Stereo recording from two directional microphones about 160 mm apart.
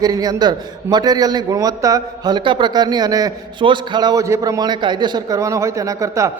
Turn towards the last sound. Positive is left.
turn(degrees=-20)  # may be behind; listen again after turning